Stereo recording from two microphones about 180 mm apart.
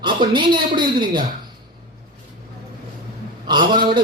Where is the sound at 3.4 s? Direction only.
25° right (ahead or behind).